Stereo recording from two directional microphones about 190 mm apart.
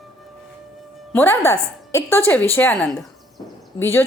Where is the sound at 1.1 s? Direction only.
10° left (ahead or behind).